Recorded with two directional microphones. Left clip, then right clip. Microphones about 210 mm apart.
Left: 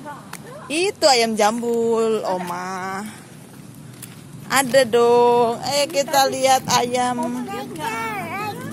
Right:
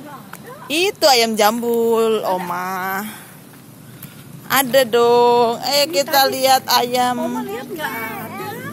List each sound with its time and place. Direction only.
0.7 s speech: 5° right (ahead or behind)
4.5 s speech: 5° right (ahead or behind)
7.9 s vehicle: 30° left (ahead or behind)